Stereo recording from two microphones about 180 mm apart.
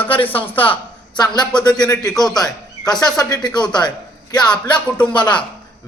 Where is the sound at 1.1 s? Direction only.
25° left (ahead or behind).